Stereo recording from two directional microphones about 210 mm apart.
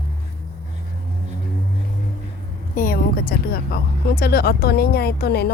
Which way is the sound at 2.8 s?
45° left (ahead or behind).